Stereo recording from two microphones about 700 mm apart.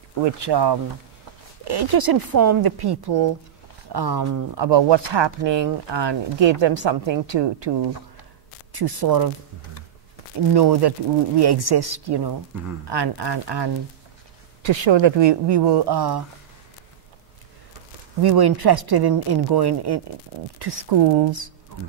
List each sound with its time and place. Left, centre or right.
0.2 s speech: right
8.7 s speech: right
10.5 s speech: right
18.2 s speech: right